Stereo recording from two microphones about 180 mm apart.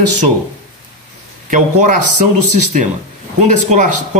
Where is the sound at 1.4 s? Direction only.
45° right (ahead or behind).